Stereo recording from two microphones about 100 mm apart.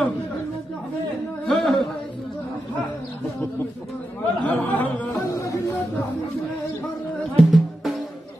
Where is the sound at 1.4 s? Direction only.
5° left (ahead or behind).